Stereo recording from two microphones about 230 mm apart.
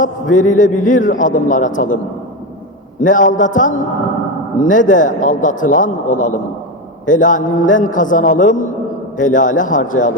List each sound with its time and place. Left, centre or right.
0.0 s a man's voice: left
3.0 s a man's voice: left